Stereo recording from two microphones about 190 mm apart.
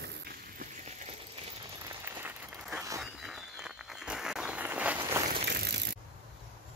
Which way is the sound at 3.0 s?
Centre (ahead or behind).